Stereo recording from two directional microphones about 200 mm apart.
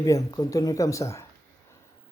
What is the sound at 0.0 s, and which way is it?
Speech, 15° left (ahead or behind).